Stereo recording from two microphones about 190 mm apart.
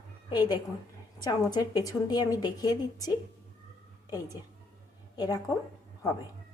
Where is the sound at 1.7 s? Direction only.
20° left (ahead or behind).